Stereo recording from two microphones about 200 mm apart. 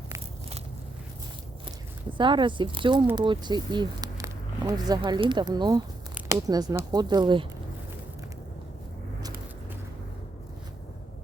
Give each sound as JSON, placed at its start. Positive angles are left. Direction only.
{"t": 2.1, "sound": "speech", "side_deg": -25}
{"t": 6.2, "sound": "a sound", "side_deg": -5}
{"t": 6.5, "sound": "speech", "side_deg": -20}